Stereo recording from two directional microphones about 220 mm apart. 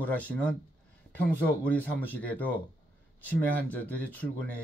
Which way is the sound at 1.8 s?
5° left (ahead or behind).